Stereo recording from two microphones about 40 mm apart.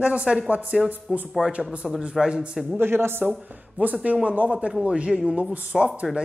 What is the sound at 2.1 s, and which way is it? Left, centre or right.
Speech, right.